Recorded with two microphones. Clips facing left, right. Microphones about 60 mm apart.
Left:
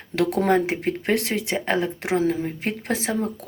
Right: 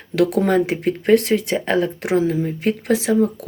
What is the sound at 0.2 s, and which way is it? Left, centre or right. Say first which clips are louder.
Speech: right 3 dB; left.